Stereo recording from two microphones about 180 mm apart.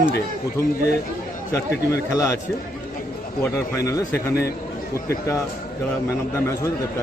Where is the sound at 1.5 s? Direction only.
15° left (ahead or behind).